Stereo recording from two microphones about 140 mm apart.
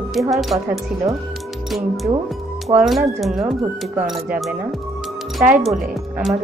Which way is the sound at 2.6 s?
Centre (ahead or behind).